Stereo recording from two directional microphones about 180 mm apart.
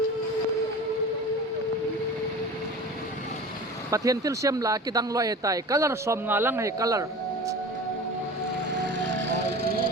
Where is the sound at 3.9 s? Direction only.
20° right (ahead or behind).